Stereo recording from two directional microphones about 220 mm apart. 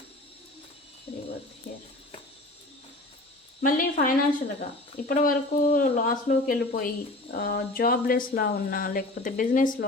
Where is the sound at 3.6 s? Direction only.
40° left (ahead or behind).